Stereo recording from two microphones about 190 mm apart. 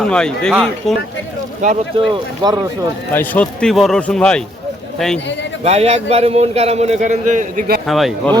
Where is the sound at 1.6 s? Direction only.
40° right (ahead or behind).